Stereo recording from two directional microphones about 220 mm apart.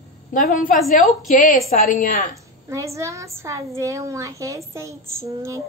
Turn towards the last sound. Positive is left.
turn(degrees=-15)  # may be behind; listen again after turning